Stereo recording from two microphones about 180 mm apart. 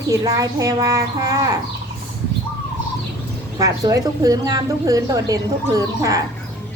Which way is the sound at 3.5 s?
20° right (ahead or behind).